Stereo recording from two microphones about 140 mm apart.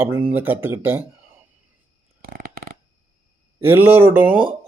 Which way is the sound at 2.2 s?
90° right.